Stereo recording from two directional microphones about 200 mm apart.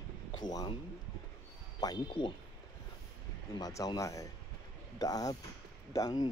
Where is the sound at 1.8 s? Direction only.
20° left (ahead or behind).